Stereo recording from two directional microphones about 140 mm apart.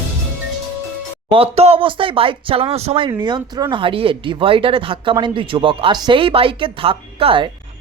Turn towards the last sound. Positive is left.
turn(degrees=-40)  # may be behind; listen again after turning